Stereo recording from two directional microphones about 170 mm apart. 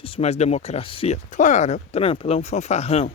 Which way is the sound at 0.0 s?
35° left (ahead or behind).